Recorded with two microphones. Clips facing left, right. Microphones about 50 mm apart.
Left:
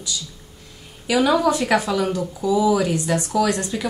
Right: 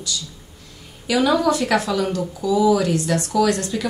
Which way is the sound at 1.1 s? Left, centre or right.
Centre.